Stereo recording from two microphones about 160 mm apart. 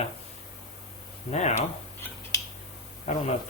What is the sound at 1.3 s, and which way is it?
Speech, 45° left (ahead or behind).